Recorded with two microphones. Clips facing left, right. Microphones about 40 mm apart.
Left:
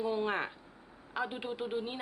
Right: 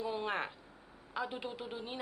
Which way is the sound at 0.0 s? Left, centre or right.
Centre.